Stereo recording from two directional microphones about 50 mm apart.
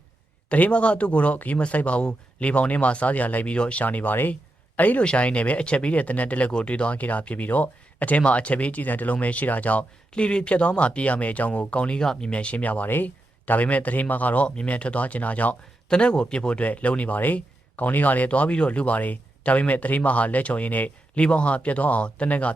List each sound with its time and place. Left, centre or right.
0.4 s speech: left
3.8 s speech: left
11.9 s speech: centre; by 14.4 s left
14.4 s speech: left
15.9 s speech: centre